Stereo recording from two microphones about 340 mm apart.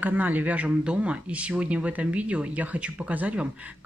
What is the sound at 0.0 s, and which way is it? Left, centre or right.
Speech, centre.